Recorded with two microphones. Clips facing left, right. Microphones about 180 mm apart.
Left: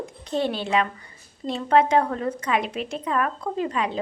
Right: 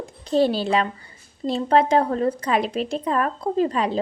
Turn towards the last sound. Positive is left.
turn(degrees=-35)  # may be behind; listen again after turning